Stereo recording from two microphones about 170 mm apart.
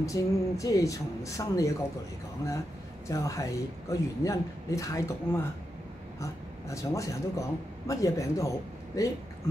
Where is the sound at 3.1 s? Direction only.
20° left (ahead or behind).